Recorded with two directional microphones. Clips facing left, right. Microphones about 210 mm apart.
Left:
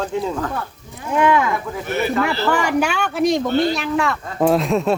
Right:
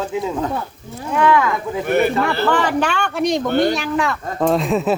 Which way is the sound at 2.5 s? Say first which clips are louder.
Even; 10° left (ahead or behind).